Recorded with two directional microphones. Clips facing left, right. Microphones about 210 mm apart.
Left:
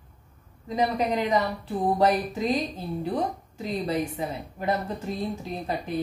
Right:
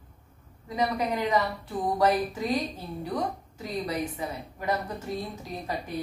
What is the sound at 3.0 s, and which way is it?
A woman's voice, 30° left (ahead or behind).